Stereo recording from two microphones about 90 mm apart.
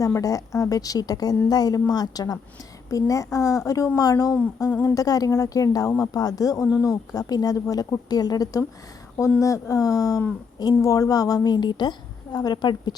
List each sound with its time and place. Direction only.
0.0 s a woman's voice: 40° left (ahead or behind)
11.5 s a woman's voice: 55° left (ahead or behind)